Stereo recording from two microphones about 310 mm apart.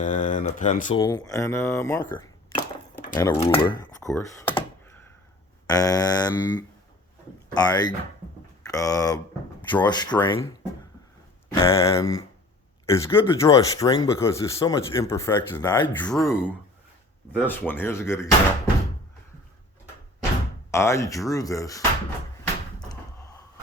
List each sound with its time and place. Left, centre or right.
0.0 s speech: left
0.9 s speech: centre
2.5 s a sound: left
3.2 s speech: centre
3.7 s computer keyboard: centre
5.6 s speech: centre
11.4 s speech: centre
20.7 s speech: centre